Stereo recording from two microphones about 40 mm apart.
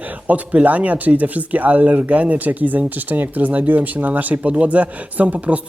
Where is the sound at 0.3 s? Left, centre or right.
Right.